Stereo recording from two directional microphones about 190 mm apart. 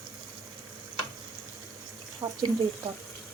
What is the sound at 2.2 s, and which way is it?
Speech, 15° right (ahead or behind).